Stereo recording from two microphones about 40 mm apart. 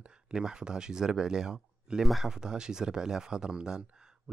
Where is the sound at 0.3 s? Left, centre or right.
Centre.